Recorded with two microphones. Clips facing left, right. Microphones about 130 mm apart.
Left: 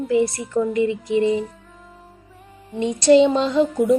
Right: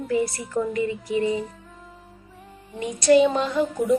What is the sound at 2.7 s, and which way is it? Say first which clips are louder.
Speech: left 3 dB; 25° left (ahead or behind).